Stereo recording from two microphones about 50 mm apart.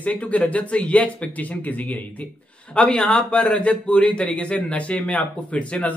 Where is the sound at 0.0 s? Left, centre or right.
Left.